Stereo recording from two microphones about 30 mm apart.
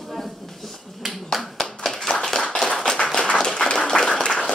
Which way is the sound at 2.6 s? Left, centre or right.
Left.